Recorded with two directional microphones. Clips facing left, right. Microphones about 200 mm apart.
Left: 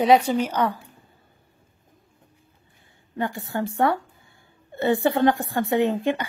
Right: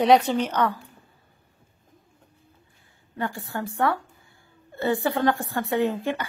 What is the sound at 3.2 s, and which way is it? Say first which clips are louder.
A woman's voice: left 3 dB; 20° left (ahead or behind).